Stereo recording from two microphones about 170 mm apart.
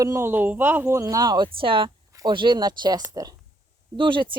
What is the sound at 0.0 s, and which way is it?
Speech, 15° right (ahead or behind).